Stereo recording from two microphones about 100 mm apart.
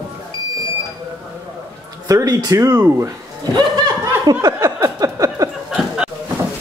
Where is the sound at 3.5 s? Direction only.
45° right (ahead or behind).